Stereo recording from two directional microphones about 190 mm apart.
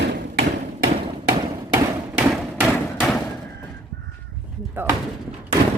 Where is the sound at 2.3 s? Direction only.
Centre (ahead or behind).